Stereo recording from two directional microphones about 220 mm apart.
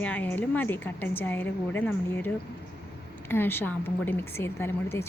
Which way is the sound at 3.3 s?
10° left (ahead or behind).